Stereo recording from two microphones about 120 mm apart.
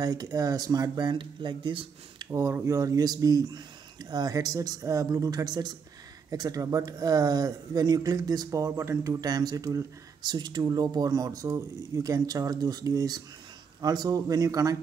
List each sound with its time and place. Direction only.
0.0 s speech: 35° right (ahead or behind)
2.3 s speech: 25° right (ahead or behind)